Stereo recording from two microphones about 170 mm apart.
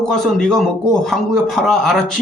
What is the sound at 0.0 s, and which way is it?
Speech, 5° left (ahead or behind).